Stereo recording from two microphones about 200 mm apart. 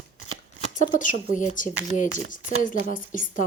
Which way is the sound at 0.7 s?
40° left (ahead or behind).